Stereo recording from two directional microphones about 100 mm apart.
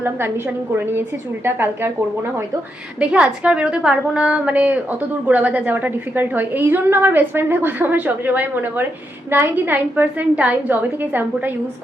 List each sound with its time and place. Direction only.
0.0 s a woman's voice: 25° right (ahead or behind)
3.0 s a woman's voice: 10° right (ahead or behind)